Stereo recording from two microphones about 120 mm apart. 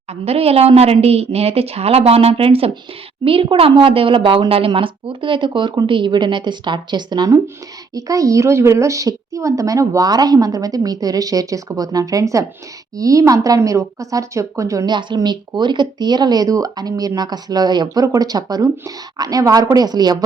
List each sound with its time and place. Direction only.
0.1 s a woman's voice: 55° right (ahead or behind); by 14.9 s 25° right (ahead or behind)
14.9 s speech: 40° right (ahead or behind)